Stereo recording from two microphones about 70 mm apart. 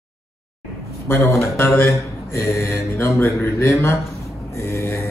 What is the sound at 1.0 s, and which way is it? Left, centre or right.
A man's voice, left.